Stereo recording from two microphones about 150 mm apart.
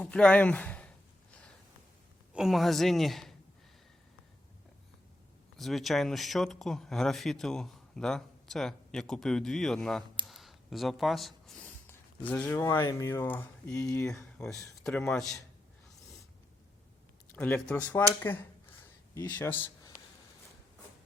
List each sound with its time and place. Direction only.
0.0 s speech: 5° left (ahead or behind)
2.3 s speech: centre (ahead or behind)
5.5 s speech: centre (ahead or behind)
10.2 s a sound: centre (ahead or behind)
12.5 s speech: 15° left (ahead or behind)
14.3 s speech: centre (ahead or behind)
17.3 s speech: 10° left (ahead or behind)